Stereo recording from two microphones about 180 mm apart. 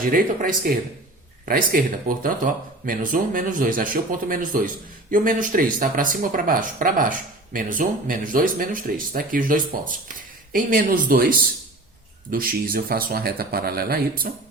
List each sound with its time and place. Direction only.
0.0 s speech: 50° right (ahead or behind)